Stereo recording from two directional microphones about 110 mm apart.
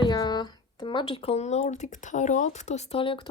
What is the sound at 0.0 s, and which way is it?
Speech, 40° left (ahead or behind).